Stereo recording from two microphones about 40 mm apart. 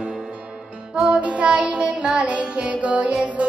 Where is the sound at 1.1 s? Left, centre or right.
Right.